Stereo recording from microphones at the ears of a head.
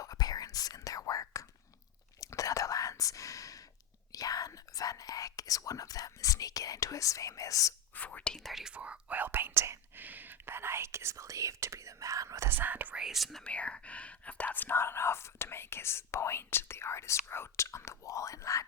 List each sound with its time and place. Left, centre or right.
0.0 s whispering: left
4.1 s speech: left
8.7 s speech: right
14.5 s speech: left